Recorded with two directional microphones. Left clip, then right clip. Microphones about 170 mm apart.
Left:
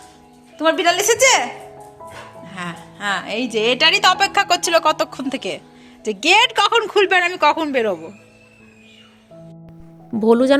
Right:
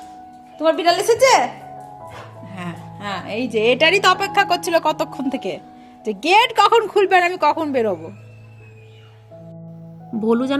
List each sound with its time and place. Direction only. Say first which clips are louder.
0.6 s speech: even; centre (ahead or behind)
2.5 s speech: left 4 dB; centre (ahead or behind)
10.2 s speech: left 6 dB; 40° left (ahead or behind)